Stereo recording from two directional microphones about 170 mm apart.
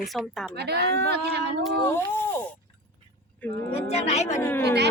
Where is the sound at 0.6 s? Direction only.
75° right (ahead or behind).